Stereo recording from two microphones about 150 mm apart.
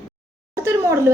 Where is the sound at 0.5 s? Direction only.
20° right (ahead or behind).